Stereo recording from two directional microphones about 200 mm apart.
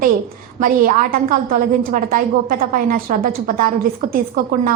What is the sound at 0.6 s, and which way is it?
A woman's voice, 40° right (ahead or behind).